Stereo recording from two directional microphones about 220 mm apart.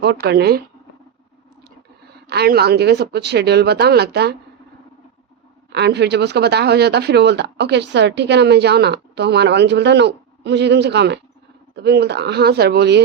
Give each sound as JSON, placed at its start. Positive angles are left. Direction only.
{"t": 0.0, "sound": "speech", "side_deg": -50}
{"t": 2.3, "sound": "speech", "side_deg": -45}
{"t": 5.7, "sound": "speech", "side_deg": -50}